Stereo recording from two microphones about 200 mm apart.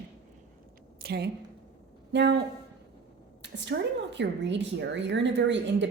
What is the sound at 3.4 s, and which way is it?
A woman's voice, 60° right (ahead or behind).